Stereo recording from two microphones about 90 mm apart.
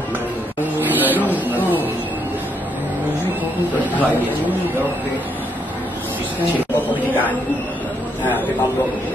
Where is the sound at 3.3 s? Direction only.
20° right (ahead or behind).